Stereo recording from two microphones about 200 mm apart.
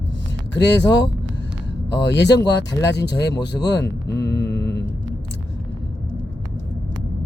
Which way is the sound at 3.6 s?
60° left (ahead or behind).